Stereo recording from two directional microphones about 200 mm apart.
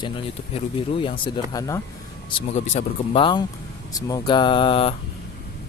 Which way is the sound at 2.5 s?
35° left (ahead or behind).